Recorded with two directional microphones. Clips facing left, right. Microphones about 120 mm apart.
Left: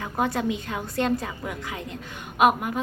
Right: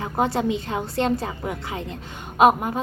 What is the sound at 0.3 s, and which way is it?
A woman's voice, 25° right (ahead or behind).